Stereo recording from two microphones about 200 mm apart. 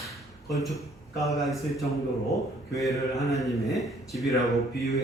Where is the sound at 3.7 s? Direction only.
Centre (ahead or behind).